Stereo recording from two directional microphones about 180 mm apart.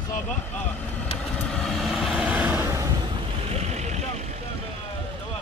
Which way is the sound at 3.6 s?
40° right (ahead or behind).